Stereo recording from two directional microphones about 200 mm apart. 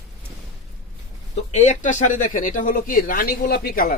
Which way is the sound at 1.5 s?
35° left (ahead or behind).